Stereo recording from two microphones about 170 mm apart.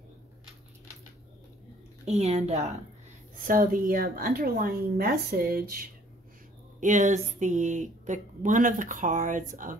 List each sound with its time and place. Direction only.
2.0 s a woman's voice: 40° right (ahead or behind)
3.4 s a woman's voice: 55° right (ahead or behind)
6.8 s speech: 45° right (ahead or behind)